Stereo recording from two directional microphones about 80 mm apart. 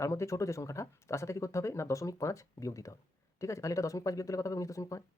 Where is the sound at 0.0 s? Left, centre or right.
Left.